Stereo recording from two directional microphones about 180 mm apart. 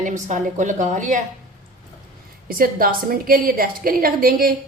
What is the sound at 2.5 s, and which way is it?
A woman's voice, 55° right (ahead or behind).